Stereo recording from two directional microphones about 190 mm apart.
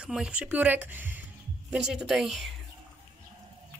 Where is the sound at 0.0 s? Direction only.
5° right (ahead or behind).